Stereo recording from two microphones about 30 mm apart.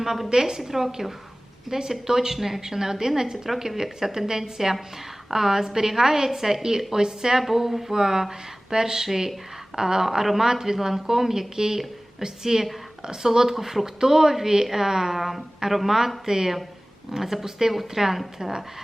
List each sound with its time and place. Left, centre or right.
0.0 s a woman's voice: centre
7.4 s speech: centre